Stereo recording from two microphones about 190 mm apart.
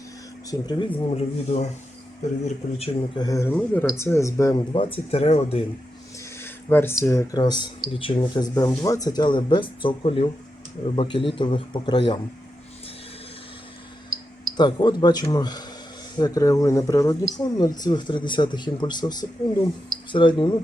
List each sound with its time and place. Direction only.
0.6 s speech: 25° left (ahead or behind)
3.2 s speech: 15° left (ahead or behind)
4.7 s speech: 30° left (ahead or behind)
6.3 s a sound: 10° left (ahead or behind)
7.0 s speech: 15° left (ahead or behind)
14.5 s speech: 25° left (ahead or behind)